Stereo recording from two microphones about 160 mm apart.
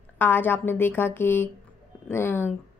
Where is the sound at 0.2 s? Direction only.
10° left (ahead or behind).